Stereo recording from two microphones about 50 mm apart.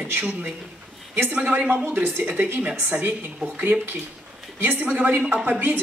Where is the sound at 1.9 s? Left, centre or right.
Right.